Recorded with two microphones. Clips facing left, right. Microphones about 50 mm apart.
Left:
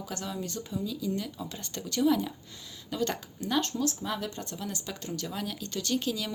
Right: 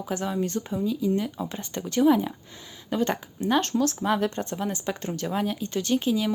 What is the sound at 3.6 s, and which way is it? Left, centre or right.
Speech, right.